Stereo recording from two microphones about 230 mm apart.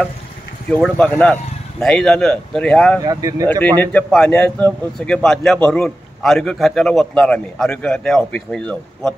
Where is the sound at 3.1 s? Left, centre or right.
Centre.